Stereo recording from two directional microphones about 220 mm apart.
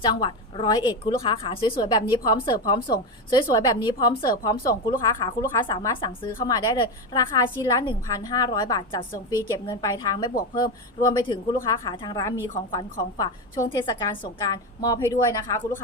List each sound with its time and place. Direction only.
0.0 s a woman's voice: 20° left (ahead or behind)